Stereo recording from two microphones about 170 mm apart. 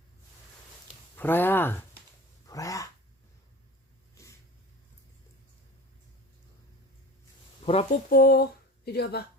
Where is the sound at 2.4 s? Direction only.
20° left (ahead or behind).